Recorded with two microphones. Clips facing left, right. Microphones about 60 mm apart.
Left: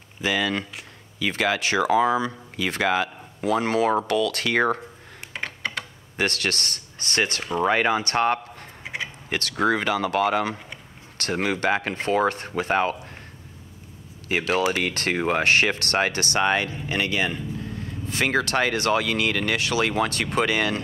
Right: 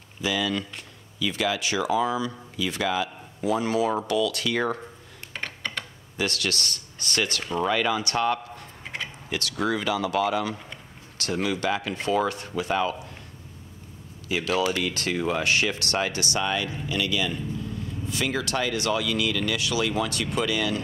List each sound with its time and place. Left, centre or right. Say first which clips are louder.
0.2 s speech: left 2 dB; left
5.3 s typing: left 2 dB; centre
6.1 s speech: left 3 dB; left
8.8 s a sound: left 3 dB; centre
9.3 s speech: left 4 dB; left
14.3 s speech: left 2 dB; left